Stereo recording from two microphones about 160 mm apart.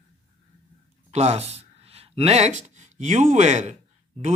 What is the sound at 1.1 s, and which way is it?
Speech, 40° right (ahead or behind).